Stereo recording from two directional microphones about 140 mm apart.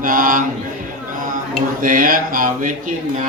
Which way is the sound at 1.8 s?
80° right.